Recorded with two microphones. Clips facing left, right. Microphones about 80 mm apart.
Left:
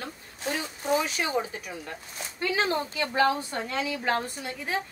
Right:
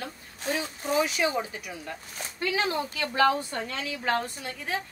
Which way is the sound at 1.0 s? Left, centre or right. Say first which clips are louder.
Right 1 dB; left.